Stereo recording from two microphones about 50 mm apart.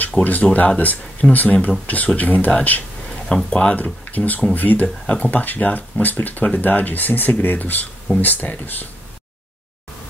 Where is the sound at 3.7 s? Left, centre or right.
Left.